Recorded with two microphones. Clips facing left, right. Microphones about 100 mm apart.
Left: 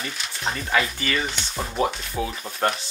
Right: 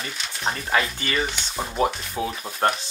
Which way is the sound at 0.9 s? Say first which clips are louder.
Even; 30° right (ahead or behind).